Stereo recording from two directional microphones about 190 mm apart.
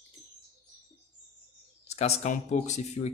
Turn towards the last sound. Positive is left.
turn(degrees=35)  # may be behind; listen again after turning